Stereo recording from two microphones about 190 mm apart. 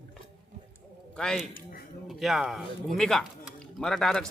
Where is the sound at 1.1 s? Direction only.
5° left (ahead or behind).